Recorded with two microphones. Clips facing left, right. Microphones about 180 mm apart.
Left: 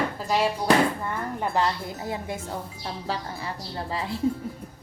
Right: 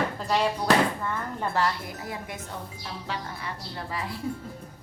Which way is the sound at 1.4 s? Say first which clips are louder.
Left 2 dB; 20° left (ahead or behind).